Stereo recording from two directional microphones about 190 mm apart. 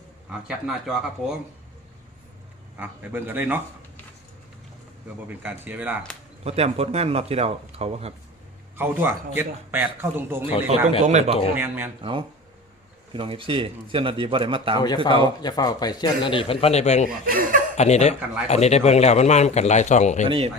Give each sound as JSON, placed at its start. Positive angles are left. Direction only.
{"t": 0.3, "sound": "speech", "side_deg": -5}
{"t": 2.7, "sound": "a man's voice", "side_deg": -10}
{"t": 5.4, "sound": "a man's voice", "side_deg": -10}
{"t": 6.4, "sound": "speech", "side_deg": -35}
{"t": 8.7, "sound": "a man's voice", "side_deg": -10}
{"t": 11.0, "sound": "speech", "side_deg": -35}
{"t": 11.5, "sound": "a man's voice", "side_deg": -10}
{"t": 13.1, "sound": "a man's voice", "side_deg": -30}
{"t": 14.8, "sound": "speech", "side_deg": 25}
{"t": 17.2, "sound": "speech", "side_deg": -45}
{"t": 17.7, "sound": "speech", "side_deg": 35}
{"t": 20.2, "sound": "a man's voice", "side_deg": -30}